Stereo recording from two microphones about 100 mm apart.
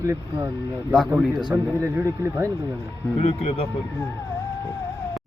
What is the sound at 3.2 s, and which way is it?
Speech, 90° left.